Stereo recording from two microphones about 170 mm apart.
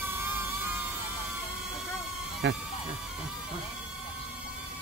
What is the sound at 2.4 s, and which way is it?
Speech, 90° right.